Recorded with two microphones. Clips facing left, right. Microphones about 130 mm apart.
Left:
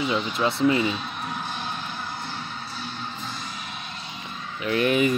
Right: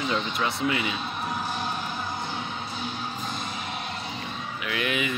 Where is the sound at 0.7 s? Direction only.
35° left (ahead or behind).